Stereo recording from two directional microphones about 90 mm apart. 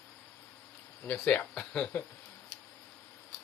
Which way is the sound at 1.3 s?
10° left (ahead or behind).